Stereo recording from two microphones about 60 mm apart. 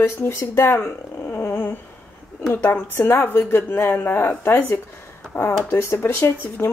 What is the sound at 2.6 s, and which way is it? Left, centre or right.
Speech, left.